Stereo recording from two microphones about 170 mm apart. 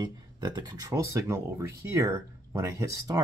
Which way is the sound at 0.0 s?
25° right (ahead or behind).